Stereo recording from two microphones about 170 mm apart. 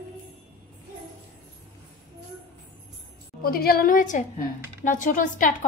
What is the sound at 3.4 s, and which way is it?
A woman's voice, 60° left (ahead or behind).